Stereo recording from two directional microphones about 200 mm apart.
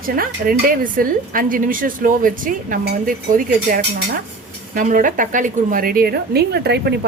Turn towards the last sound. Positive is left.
turn(degrees=-55)  # may be behind; listen again after turning